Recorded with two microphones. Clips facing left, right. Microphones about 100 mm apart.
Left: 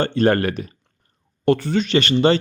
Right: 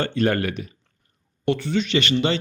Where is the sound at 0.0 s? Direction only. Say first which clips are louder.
Left 4 dB; 35° left (ahead or behind).